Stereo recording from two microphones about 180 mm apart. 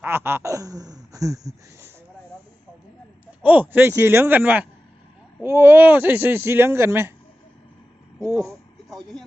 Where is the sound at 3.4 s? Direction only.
10° right (ahead or behind).